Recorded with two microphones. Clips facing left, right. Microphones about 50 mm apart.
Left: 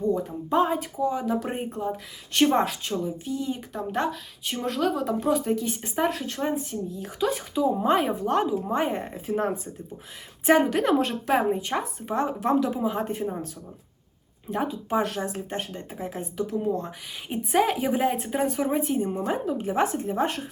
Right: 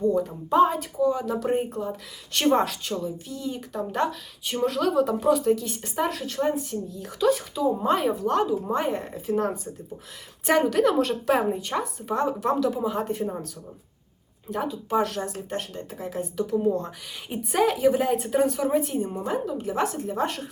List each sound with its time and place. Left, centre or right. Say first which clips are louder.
0.1 s a woman's voice: right 1 dB; centre
0.7 s a woman's voice: right 2 dB; centre
2.4 s a woman's voice: even; centre
3.0 s speech: left 2 dB; left
3.7 s a woman's voice: right 3 dB; centre; by 9.3 s left
10.4 s a woman's voice: even; centre
14.5 s speech: right 1 dB; left
16.4 s a woman's voice: right 3 dB; centre
19.5 s speech: left 2 dB; left; by 20.5 s centre